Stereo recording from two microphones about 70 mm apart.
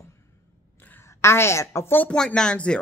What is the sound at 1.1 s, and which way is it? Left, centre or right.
Speech, left.